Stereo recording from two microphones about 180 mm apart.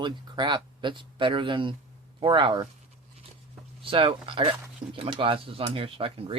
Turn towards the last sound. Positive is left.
turn(degrees=-30)  # may be behind; listen again after turning